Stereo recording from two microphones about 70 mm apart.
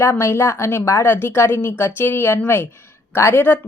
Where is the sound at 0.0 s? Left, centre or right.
Left.